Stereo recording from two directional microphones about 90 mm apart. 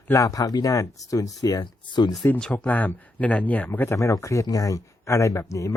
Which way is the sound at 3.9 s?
35° left (ahead or behind).